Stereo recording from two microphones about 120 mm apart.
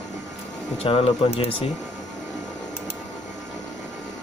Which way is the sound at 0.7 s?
55° left (ahead or behind).